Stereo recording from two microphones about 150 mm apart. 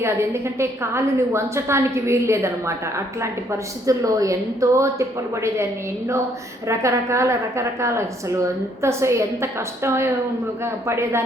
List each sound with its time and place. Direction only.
0.0 s a woman's voice: 15° right (ahead or behind)
6.7 s a woman's voice: 20° right (ahead or behind)